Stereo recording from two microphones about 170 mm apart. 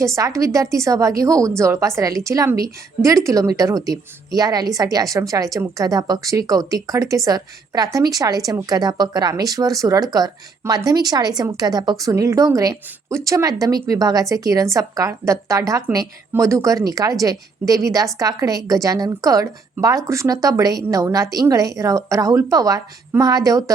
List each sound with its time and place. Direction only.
0.2 s a woman's voice: 20° right (ahead or behind)